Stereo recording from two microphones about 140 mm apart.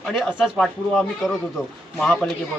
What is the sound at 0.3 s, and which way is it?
A man's voice, centre (ahead or behind).